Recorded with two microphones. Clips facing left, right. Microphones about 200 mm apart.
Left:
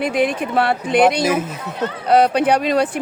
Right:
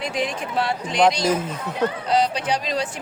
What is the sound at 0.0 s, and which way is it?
Speech, 60° left (ahead or behind).